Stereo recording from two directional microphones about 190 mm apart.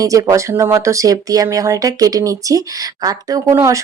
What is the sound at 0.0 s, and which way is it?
Speech, 15° right (ahead or behind).